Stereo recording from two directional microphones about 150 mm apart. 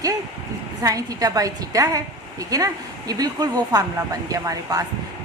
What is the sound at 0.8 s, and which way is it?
A woman's voice, 25° right (ahead or behind).